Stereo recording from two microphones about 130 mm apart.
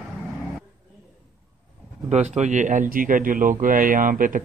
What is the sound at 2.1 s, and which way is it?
A man's voice, 60° right (ahead or behind).